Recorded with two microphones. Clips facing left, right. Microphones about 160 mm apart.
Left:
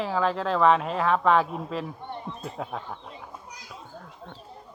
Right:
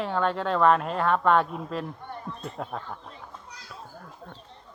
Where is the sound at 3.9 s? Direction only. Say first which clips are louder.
Left 1 dB; 5° right (ahead or behind).